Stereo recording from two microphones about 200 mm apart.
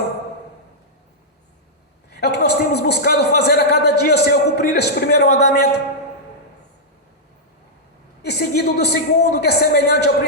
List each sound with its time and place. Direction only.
2.0 s a man's voice: 55° left (ahead or behind)
8.2 s a woman's voice: 55° left (ahead or behind)